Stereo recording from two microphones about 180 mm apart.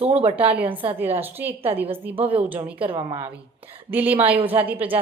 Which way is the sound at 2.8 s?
25° right (ahead or behind).